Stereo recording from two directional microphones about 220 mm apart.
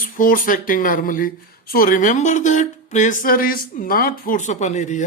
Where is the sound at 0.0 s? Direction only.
40° left (ahead or behind).